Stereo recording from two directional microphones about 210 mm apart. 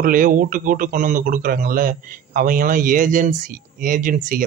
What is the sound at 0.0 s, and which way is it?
Speech, 40° right (ahead or behind).